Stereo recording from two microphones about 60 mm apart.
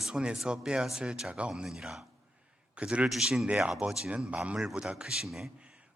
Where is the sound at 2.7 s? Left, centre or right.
Centre.